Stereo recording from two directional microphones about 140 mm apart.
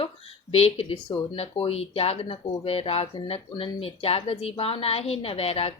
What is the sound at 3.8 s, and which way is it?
A woman's voice, 45° left (ahead or behind).